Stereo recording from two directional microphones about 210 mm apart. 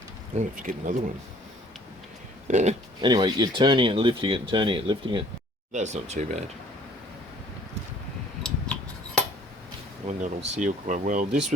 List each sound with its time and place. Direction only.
0.3 s speech: 40° right (ahead or behind)
2.5 s speech: 35° right (ahead or behind)
3.0 s speech: 20° right (ahead or behind)
8.4 s a sound: 5° left (ahead or behind)
10.1 s speech: 35° right (ahead or behind)